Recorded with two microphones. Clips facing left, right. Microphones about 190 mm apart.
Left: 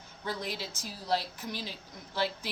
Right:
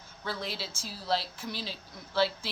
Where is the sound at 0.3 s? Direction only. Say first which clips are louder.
Even; 15° left (ahead or behind).